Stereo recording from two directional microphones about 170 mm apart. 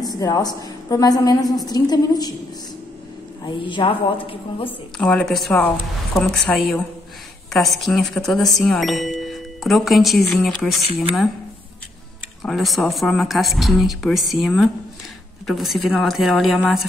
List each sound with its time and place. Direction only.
0.2 s a woman's voice: 20° left (ahead or behind)
3.4 s a woman's voice: 30° left (ahead or behind)
4.9 s speech: 5° left (ahead or behind)
12.4 s speech: centre (ahead or behind)